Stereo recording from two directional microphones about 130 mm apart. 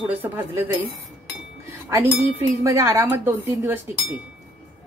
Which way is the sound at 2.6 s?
25° right (ahead or behind).